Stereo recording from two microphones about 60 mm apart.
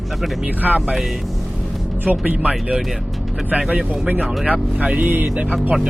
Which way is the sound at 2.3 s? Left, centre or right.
Centre.